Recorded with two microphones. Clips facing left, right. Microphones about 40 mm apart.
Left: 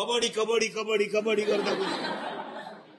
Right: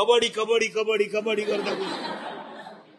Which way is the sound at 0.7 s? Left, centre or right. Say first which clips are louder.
Right 3 dB; centre.